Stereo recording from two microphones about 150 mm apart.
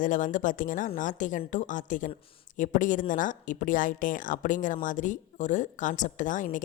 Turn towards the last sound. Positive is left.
turn(degrees=60)  # may be behind; listen again after turning